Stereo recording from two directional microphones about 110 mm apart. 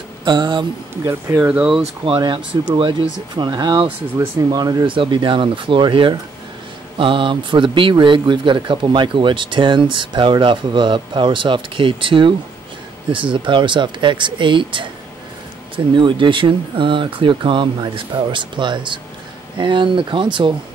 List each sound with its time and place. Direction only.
0.2 s speech: 45° right (ahead or behind)
1.0 s speech: 25° right (ahead or behind)
1.5 s speech: 15° right (ahead or behind)
2.1 s speech: 45° right (ahead or behind)
4.8 s speech: 50° right (ahead or behind)